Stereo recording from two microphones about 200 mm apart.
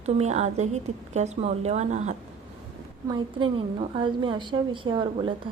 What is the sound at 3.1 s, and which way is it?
A woman's voice, 25° right (ahead or behind).